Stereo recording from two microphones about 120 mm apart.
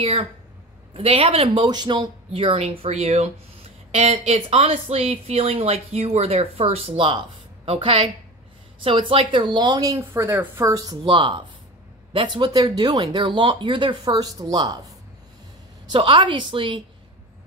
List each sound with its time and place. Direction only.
0.0 s speech: 55° right (ahead or behind)
2.4 s speech: 55° right (ahead or behind)
9.4 s a woman's voice: 35° right (ahead or behind)
11.1 s speech: 40° right (ahead or behind)